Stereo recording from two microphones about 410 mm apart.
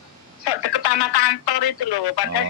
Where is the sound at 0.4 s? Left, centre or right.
Left.